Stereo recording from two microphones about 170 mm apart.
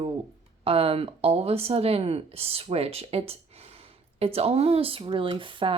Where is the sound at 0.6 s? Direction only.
35° right (ahead or behind).